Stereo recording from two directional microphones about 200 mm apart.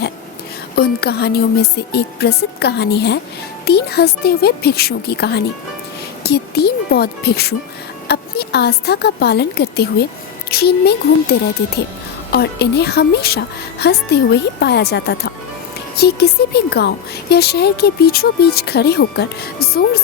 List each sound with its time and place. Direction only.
0.8 s a woman's voice: 55° left (ahead or behind)